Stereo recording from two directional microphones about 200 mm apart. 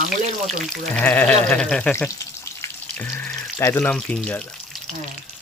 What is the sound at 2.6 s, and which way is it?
Frying, 10° left (ahead or behind).